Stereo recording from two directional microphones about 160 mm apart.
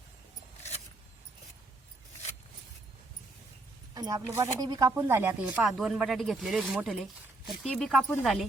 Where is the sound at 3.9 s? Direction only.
25° right (ahead or behind).